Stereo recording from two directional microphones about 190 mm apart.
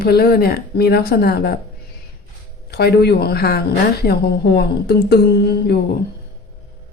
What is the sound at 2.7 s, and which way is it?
Speech, 55° left (ahead or behind).